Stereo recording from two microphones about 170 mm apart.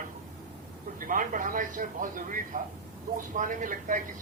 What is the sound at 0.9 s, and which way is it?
Speech, 50° right (ahead or behind).